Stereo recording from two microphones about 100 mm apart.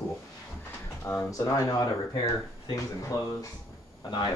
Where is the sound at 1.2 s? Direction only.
35° left (ahead or behind).